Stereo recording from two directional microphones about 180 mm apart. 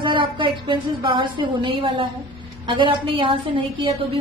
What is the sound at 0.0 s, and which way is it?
A woman's voice, 25° right (ahead or behind).